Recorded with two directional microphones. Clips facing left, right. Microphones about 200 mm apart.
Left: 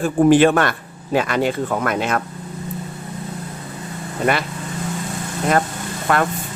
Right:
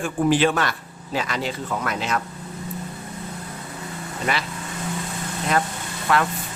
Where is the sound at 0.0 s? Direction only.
50° left (ahead or behind).